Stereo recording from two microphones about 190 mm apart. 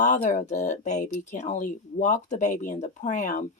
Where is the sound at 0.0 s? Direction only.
40° left (ahead or behind).